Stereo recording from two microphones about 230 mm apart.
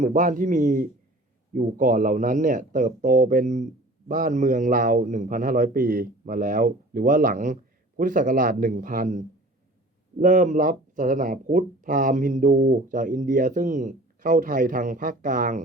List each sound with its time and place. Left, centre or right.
0.0 s speech: right